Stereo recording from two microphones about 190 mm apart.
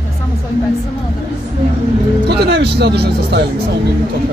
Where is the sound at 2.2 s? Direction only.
60° right (ahead or behind).